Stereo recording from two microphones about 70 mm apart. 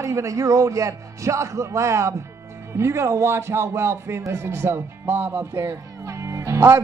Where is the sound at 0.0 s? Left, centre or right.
Right.